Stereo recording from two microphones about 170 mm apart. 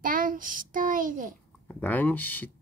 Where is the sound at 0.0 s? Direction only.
55° right (ahead or behind).